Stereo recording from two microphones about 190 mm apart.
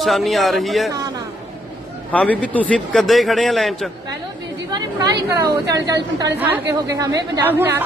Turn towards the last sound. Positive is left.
turn(degrees=-10)  # may be behind; listen again after turning